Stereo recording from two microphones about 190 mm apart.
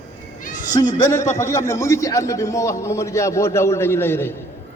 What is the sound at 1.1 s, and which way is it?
A man's voice, 15° left (ahead or behind).